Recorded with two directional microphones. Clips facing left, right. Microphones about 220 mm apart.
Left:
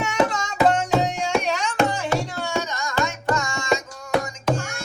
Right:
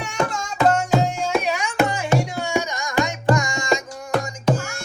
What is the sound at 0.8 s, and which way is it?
Music, centre (ahead or behind).